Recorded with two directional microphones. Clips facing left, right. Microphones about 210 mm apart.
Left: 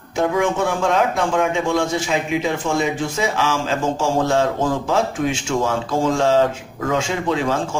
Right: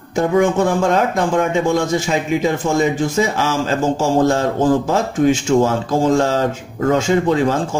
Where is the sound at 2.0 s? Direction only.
40° right (ahead or behind).